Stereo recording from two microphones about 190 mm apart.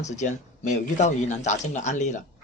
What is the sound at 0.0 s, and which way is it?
A man's voice, 40° left (ahead or behind).